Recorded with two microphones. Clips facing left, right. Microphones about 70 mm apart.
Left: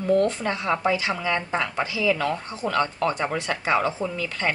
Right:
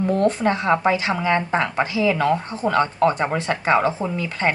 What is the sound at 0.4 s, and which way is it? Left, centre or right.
Speech, right.